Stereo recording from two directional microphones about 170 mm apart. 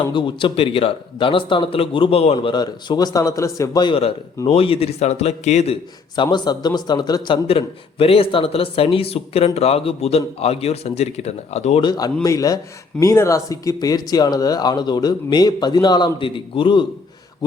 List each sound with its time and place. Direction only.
0.1 s a man's voice: 30° left (ahead or behind)
2.5 s a man's voice: 25° left (ahead or behind)
6.1 s a man's voice: 25° left (ahead or behind)
11.9 s speech: 20° left (ahead or behind)